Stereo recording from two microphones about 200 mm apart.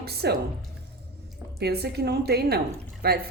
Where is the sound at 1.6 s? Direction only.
55° right (ahead or behind).